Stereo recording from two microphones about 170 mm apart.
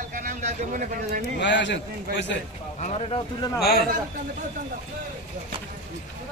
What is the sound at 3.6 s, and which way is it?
Speech, 65° left (ahead or behind).